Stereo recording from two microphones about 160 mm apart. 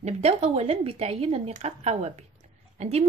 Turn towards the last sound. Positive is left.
turn(degrees=-40)  # may be behind; listen again after turning